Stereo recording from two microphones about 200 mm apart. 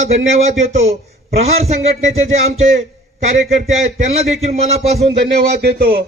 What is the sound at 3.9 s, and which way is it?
Music, 35° right (ahead or behind).